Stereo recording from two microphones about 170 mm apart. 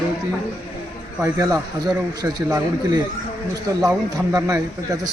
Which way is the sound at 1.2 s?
20° right (ahead or behind).